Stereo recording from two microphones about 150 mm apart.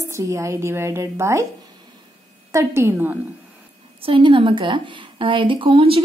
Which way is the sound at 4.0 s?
35° right (ahead or behind).